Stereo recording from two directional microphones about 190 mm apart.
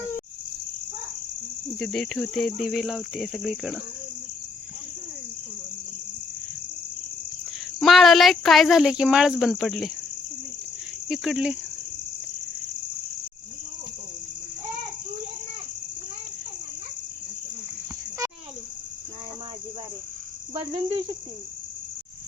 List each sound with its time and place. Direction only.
1.8 s speech: centre (ahead or behind)
7.8 s speech: centre (ahead or behind)
11.1 s speech: 5° right (ahead or behind)
20.5 s cricket: 20° right (ahead or behind)